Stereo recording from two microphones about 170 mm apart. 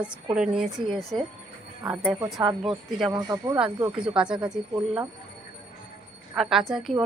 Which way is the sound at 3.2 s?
20° right (ahead or behind).